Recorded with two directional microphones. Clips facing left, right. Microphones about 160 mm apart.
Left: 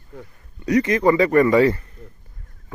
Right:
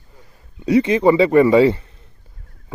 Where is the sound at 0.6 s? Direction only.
25° right (ahead or behind).